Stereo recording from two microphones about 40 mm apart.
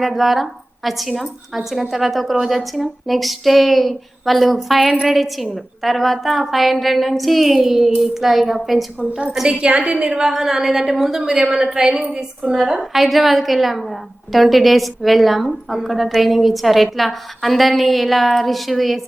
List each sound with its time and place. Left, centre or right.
0.0 s a woman's voice: centre
9.6 s a woman's voice: right
12.8 s a woman's voice: centre